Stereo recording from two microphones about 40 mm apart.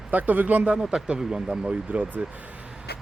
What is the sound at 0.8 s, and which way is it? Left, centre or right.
Speech, centre.